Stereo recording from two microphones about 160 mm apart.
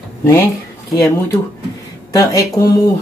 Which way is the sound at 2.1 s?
20° left (ahead or behind).